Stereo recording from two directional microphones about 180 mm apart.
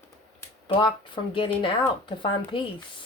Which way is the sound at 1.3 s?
30° left (ahead or behind).